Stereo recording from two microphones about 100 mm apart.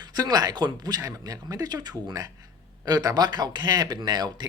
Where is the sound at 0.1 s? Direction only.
40° right (ahead or behind).